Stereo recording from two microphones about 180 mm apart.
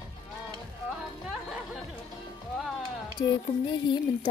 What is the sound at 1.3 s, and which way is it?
Music, 5° right (ahead or behind).